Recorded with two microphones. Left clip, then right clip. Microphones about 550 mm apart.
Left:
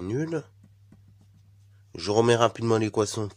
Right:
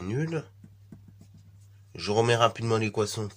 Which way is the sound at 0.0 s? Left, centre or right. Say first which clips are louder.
Left 3 dB; left.